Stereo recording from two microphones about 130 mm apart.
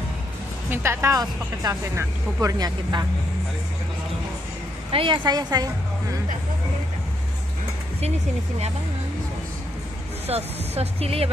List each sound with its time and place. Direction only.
0.7 s speech: 20° right (ahead or behind)
4.9 s a woman's voice: 40° right (ahead or behind)
10.2 s speech: 55° right (ahead or behind)